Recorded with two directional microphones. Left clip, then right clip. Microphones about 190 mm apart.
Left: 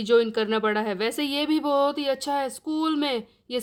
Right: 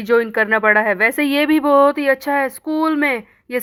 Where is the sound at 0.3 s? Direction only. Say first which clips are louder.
Right 10 dB; 55° right (ahead or behind).